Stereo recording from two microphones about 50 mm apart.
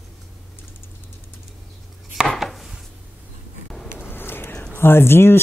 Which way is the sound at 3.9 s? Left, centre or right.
Left.